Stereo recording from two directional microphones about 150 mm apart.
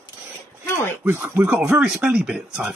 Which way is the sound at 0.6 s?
15° left (ahead or behind).